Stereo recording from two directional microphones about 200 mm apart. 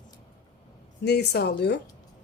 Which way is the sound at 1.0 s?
55° left (ahead or behind).